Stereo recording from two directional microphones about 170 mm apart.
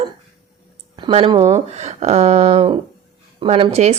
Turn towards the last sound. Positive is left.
turn(degrees=-40)  # may be behind; listen again after turning